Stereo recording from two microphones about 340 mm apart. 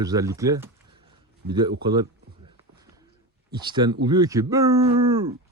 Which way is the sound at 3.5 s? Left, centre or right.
Centre.